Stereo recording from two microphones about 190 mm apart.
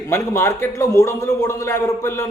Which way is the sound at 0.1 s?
15° left (ahead or behind).